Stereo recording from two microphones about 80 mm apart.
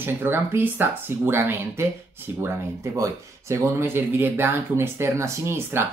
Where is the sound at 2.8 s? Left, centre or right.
Right.